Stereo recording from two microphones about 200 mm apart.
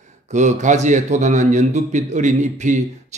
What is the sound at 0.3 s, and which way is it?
A man's voice, 35° right (ahead or behind).